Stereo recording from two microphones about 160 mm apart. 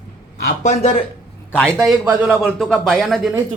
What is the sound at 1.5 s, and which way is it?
A man's voice, 5° left (ahead or behind).